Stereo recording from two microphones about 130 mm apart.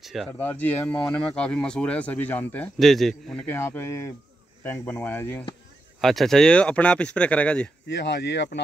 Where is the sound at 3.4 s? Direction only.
15° left (ahead or behind).